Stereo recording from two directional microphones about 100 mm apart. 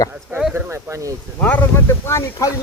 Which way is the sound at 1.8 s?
30° left (ahead or behind).